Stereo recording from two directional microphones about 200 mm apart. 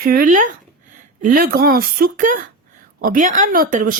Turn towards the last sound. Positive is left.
turn(degrees=-40)  # may be behind; listen again after turning